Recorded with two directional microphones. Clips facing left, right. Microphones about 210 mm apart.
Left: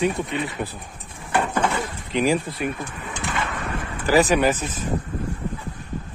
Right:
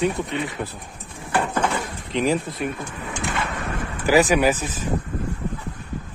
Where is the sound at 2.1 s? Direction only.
10° left (ahead or behind).